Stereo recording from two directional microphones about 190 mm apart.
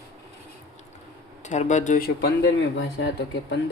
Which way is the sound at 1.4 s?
40° left (ahead or behind).